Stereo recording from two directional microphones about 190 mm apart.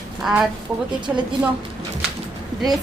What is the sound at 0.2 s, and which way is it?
Speech, centre (ahead or behind).